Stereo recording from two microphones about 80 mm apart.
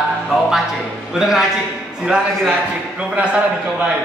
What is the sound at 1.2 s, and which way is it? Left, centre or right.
Speech, centre.